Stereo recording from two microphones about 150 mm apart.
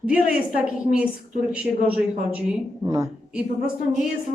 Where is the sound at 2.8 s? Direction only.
20° right (ahead or behind).